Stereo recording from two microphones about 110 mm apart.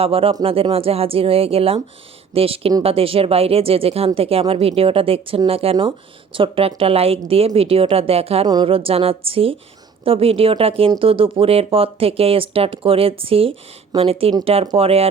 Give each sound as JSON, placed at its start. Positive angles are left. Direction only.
{"t": 0.0, "sound": "speech", "side_deg": -60}